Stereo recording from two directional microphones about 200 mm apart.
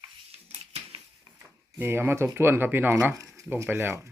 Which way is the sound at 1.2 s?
10° right (ahead or behind).